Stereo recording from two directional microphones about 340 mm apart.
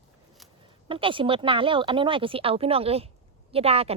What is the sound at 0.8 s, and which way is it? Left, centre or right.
Speech, centre.